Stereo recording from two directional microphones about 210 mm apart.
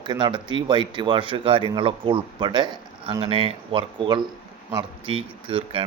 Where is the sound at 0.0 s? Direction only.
20° right (ahead or behind).